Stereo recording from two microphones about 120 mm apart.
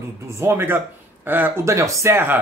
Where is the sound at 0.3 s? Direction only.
20° right (ahead or behind).